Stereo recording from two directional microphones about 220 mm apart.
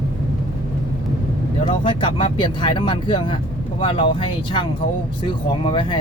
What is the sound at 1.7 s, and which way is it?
Speech, 25° left (ahead or behind).